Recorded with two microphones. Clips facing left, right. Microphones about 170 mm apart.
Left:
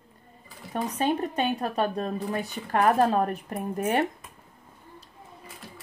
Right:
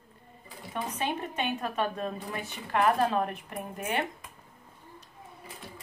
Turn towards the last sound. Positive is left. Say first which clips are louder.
# left 6 dB
turn(degrees=40)  # may be behind; listen again after turning